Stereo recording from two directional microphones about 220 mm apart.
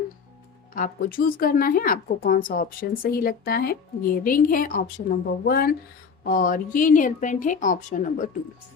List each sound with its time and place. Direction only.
0.7 s a woman's voice: 40° left (ahead or behind)